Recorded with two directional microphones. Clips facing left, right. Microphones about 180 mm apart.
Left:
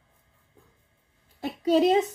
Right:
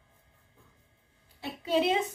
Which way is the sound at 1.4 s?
40° left (ahead or behind).